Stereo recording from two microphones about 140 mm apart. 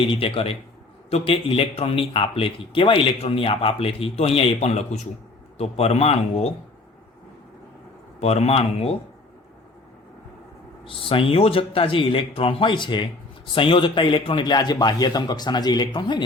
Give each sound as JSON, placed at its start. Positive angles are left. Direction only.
{"t": 0.1, "sound": "speech", "side_deg": 40}
{"t": 8.2, "sound": "speech", "side_deg": 50}
{"t": 10.8, "sound": "speech", "side_deg": 40}